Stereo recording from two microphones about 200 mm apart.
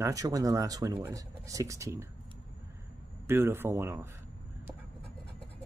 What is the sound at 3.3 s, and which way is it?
Speech, 10° right (ahead or behind).